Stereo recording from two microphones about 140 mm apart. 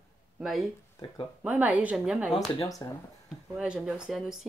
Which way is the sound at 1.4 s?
10° right (ahead or behind).